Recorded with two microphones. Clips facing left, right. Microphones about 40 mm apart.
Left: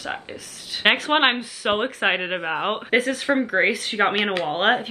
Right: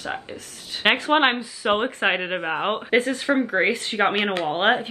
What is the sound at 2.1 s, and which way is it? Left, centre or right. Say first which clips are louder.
Speech: left 1 dB; centre.